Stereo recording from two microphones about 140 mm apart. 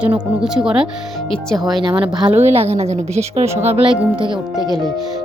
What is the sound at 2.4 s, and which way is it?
A woman's voice, 50° right (ahead or behind).